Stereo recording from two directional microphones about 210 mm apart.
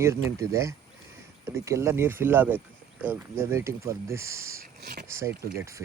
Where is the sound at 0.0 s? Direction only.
15° right (ahead or behind).